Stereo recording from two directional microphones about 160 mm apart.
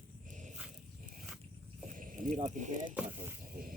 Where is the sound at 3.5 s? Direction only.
60° right (ahead or behind).